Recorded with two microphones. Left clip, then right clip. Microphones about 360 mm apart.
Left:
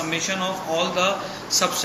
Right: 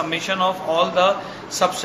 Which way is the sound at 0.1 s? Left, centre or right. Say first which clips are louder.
Right 3 dB; right.